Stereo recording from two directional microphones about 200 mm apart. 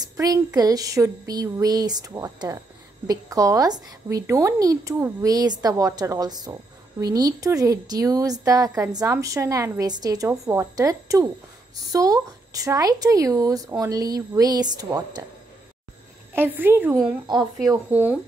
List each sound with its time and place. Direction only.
0.2 s a woman's voice: 15° right (ahead or behind)
16.3 s a woman's voice: 10° right (ahead or behind)